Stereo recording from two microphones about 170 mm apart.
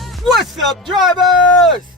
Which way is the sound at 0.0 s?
Centre (ahead or behind).